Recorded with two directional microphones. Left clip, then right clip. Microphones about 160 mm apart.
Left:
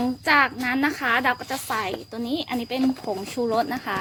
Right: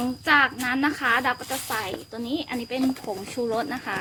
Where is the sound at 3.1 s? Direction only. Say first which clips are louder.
Left 2 dB; 45° left (ahead or behind).